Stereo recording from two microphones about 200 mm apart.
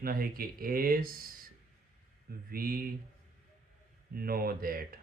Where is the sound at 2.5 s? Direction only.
45° right (ahead or behind).